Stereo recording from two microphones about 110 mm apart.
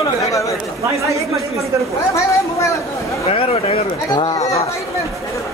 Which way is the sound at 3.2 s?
60° left (ahead or behind).